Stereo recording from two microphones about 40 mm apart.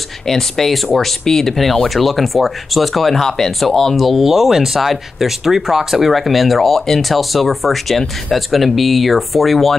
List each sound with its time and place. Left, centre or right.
0.3 s speech: centre
3.9 s speech: centre